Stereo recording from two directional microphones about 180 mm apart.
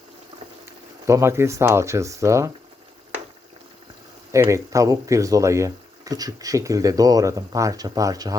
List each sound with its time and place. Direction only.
0.6 s speech: 15° right (ahead or behind)
4.3 s speech: 15° right (ahead or behind)